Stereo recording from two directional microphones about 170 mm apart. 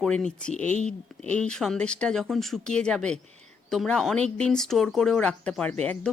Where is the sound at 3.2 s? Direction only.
40° right (ahead or behind).